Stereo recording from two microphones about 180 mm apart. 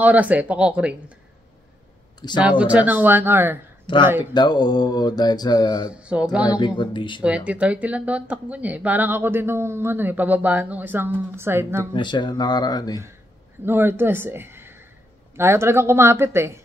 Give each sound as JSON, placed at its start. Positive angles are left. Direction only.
{"t": 0.0, "sound": "speech", "side_deg": -10}
{"t": 2.2, "sound": "speech", "side_deg": 20}
{"t": 2.6, "sound": "speech", "side_deg": -10}
{"t": 3.8, "sound": "speech", "side_deg": 25}
{"t": 4.3, "sound": "mantra", "side_deg": 25}
{"t": 5.9, "sound": "speech", "side_deg": -5}
{"t": 6.8, "sound": "mantra", "side_deg": 25}
{"t": 7.2, "sound": "speech", "side_deg": -5}
{"t": 11.9, "sound": "mantra", "side_deg": 25}
{"t": 13.7, "sound": "speech", "side_deg": -10}